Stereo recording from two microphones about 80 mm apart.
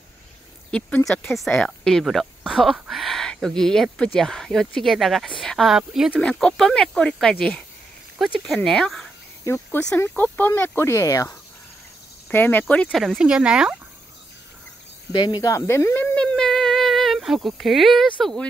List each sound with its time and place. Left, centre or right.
0.7 s speech: centre
1.9 s speech: centre
5.7 s speech: centre
6.1 s speech: centre
8.2 s speech: centre
9.8 s speech: left
10.9 s speech: left
12.3 s speech: left
12.9 s speech: centre
15.1 s cricket: left
15.5 s speech: left
16.2 s a sound: centre